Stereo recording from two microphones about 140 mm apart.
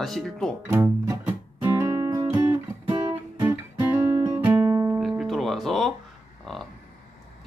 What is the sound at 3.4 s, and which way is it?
Guitar, 25° right (ahead or behind).